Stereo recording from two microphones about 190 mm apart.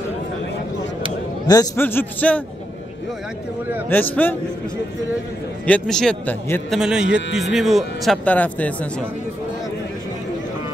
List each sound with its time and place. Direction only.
1.5 s a man's voice: 15° left (ahead or behind)
3.9 s a man's voice: 10° left (ahead or behind)
5.7 s speech: 5° left (ahead or behind)